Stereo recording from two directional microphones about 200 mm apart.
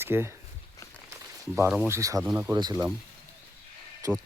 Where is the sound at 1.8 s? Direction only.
15° right (ahead or behind).